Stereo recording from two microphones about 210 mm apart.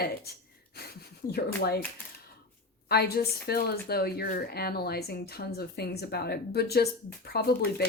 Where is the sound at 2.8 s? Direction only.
50° left (ahead or behind).